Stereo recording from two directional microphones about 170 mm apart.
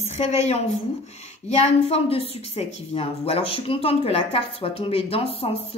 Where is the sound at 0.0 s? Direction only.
40° left (ahead or behind).